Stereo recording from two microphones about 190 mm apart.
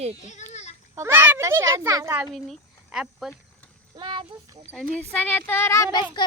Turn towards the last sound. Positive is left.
turn(degrees=25)  # may be behind; listen again after turning